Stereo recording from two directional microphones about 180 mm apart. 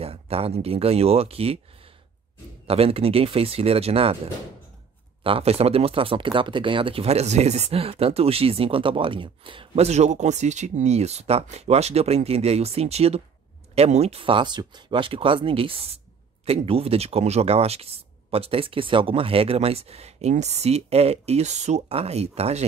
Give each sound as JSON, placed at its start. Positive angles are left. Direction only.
{"t": 0.0, "sound": "speech", "side_deg": -35}
{"t": 2.6, "sound": "speech", "side_deg": -35}
{"t": 5.2, "sound": "speech", "side_deg": -30}